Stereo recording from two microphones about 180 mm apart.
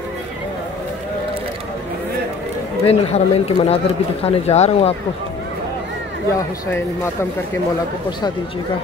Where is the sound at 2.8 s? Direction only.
35° left (ahead or behind).